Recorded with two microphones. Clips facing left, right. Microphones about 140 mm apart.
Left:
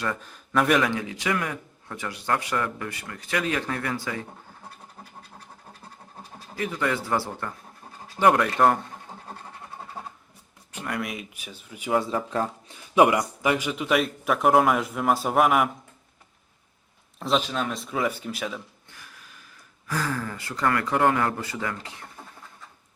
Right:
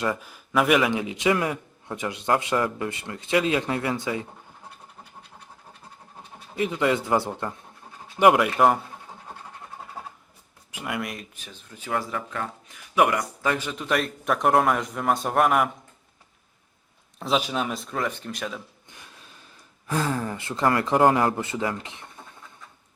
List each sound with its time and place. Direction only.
0.2 s a man's voice: 10° right (ahead or behind)
0.9 s a man's voice: 20° right (ahead or behind)
6.6 s a man's voice: 20° right (ahead or behind)
8.3 s speech: 5° right (ahead or behind)
10.0 s a sound: centre (ahead or behind)
10.7 s speech: 5° right (ahead or behind)
17.2 s speech: centre (ahead or behind)
17.4 s a man's voice: 10° right (ahead or behind)
17.7 s speech: 5° left (ahead or behind)
18.9 s speech: 20° right (ahead or behind)